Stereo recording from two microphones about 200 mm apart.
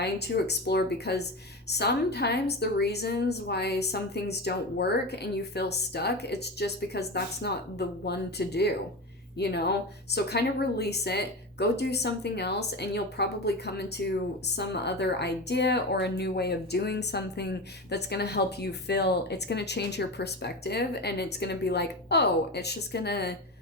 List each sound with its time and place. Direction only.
0.0 s a woman's voice: 55° left (ahead or behind)